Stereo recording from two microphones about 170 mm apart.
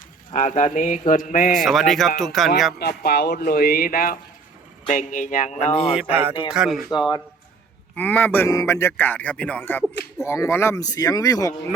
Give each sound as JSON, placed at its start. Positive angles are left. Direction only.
{"t": 0.3, "sound": "speech", "side_deg": 50}
{"t": 1.5, "sound": "speech", "side_deg": 0}
{"t": 2.7, "sound": "speech", "side_deg": 70}
{"t": 5.8, "sound": "speech", "side_deg": -5}
{"t": 7.9, "sound": "a man's voice", "side_deg": 10}